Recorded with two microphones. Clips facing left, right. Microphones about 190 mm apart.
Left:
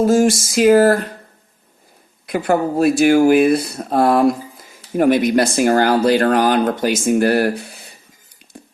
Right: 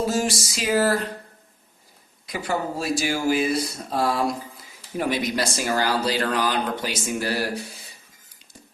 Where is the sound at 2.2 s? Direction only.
60° left (ahead or behind).